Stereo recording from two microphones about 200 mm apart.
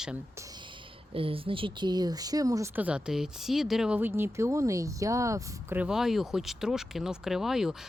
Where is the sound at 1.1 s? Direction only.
25° right (ahead or behind); by 7.7 s centre (ahead or behind).